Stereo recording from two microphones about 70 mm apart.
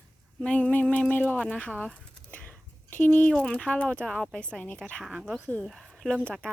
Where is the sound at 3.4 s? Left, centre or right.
Centre.